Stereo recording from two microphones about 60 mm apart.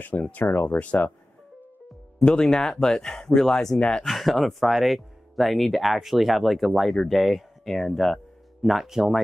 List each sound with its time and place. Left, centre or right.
0.0 s speech: left
2.2 s speech: centre
8.6 s speech: centre